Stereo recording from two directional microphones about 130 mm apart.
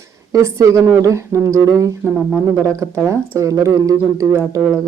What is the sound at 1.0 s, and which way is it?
Speech, 20° right (ahead or behind).